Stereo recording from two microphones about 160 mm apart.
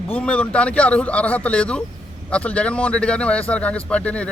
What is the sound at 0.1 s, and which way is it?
A man's voice, 5° left (ahead or behind).